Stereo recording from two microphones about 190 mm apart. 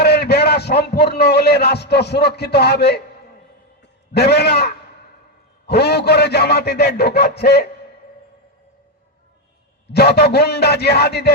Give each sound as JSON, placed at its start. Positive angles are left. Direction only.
{"t": 0.0, "sound": "a man's voice", "side_deg": 60}
{"t": 4.1, "sound": "a man's voice", "side_deg": 60}
{"t": 9.8, "sound": "a man's voice", "side_deg": 60}